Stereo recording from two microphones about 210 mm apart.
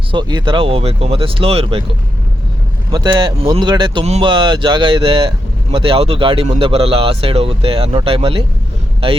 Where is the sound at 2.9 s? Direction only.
20° right (ahead or behind).